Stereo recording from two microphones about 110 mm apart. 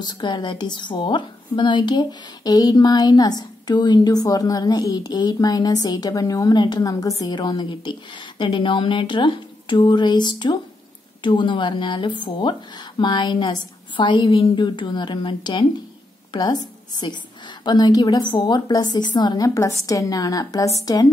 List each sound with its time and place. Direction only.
0.0 s a woman's voice: 40° left (ahead or behind)